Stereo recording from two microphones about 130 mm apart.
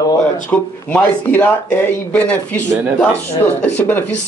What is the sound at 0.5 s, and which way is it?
Speech, 10° left (ahead or behind).